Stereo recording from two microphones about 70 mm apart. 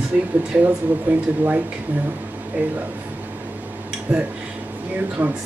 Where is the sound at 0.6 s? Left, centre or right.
Right.